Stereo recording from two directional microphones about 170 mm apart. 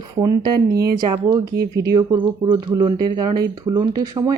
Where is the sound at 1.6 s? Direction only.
70° right (ahead or behind).